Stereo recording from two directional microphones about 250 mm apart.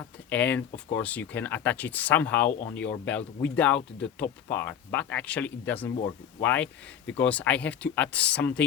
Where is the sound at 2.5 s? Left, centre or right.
Left.